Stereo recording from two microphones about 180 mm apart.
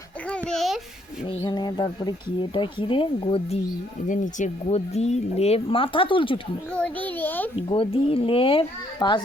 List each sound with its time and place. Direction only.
0.3 s babbling: 5° left (ahead or behind)
1.3 s speech: 25° left (ahead or behind)
4.0 s speech: 45° left (ahead or behind); by 6.4 s 30° left (ahead or behind)
6.7 s a child's voice: 10° left (ahead or behind)
7.5 s speech: 30° left (ahead or behind)